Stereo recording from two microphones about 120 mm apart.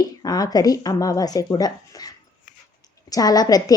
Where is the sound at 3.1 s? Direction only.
30° left (ahead or behind).